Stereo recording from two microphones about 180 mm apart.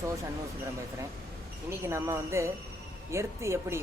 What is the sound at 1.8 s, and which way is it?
Speech, 15° right (ahead or behind).